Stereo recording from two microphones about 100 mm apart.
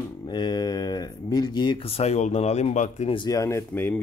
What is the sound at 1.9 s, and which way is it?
Speech, 85° left.